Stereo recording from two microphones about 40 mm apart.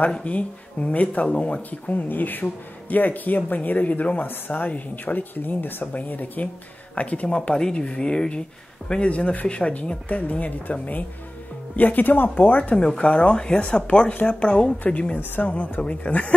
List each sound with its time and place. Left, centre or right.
0.2 s speech: left
5.9 s speech: left
7.0 s speech: left
7.5 s a woman's voice: left
9.1 s speech: left
12.7 s a woman's voice: left
15.4 s speech: left